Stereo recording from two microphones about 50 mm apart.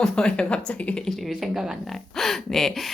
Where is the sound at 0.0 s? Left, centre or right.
Centre.